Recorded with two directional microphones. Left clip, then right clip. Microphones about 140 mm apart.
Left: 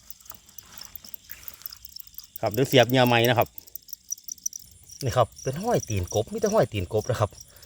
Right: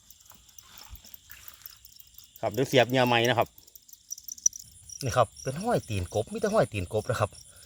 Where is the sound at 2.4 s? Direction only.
30° left (ahead or behind).